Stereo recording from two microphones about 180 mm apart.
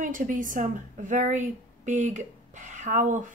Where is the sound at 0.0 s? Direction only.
45° right (ahead or behind).